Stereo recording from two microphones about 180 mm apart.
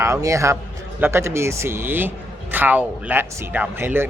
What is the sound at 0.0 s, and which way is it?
Speech, 15° right (ahead or behind).